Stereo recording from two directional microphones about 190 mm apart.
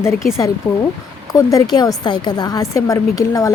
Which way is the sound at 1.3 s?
20° left (ahead or behind).